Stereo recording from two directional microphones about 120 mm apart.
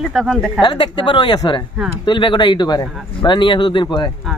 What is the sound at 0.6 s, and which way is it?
A man's voice, 40° left (ahead or behind).